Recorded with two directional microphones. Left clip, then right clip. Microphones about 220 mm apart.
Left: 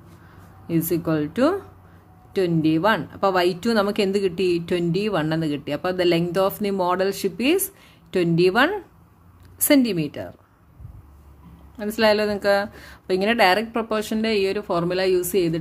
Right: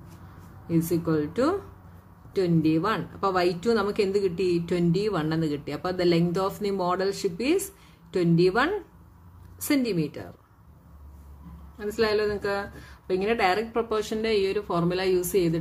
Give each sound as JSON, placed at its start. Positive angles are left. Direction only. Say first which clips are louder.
{"t": 0.7, "sound": "speech", "louder": "left 3 dB", "side_deg": 35}
{"t": 11.8, "sound": "speech", "louder": "left 5 dB", "side_deg": 40}